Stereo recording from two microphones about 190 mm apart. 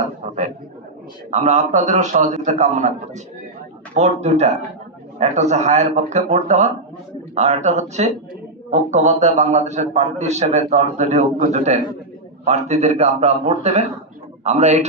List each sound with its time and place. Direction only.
0.0 s a sound: 40° right (ahead or behind)
1.3 s a man's voice: 40° right (ahead or behind)
3.9 s a man's voice: 35° right (ahead or behind)